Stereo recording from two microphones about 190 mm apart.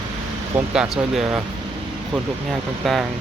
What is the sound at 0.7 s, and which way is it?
Speech, centre (ahead or behind).